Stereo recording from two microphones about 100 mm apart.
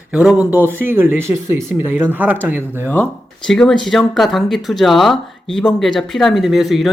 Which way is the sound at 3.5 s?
5° left (ahead or behind).